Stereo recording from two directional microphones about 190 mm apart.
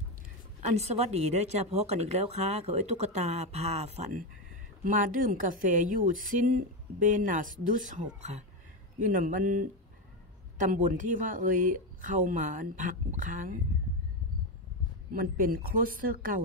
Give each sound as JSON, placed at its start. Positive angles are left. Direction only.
{"t": 0.6, "sound": "a woman's voice", "side_deg": -35}
{"t": 15.1, "sound": "a woman's voice", "side_deg": -45}